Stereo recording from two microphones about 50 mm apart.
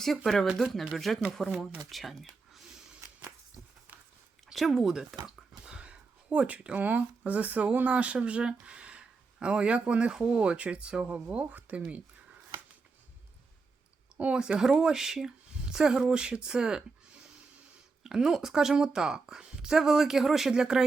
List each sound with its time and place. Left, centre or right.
0.6 s speech: centre
1.9 s a sound: centre
4.5 s speech: centre
5.6 s a sound: right
6.7 s speech: right
14.2 s speech: right
14.4 s a woman's voice: centre